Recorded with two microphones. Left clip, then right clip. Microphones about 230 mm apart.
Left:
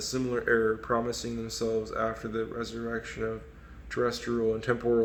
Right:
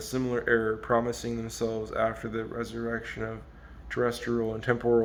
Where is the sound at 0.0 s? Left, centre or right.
Right.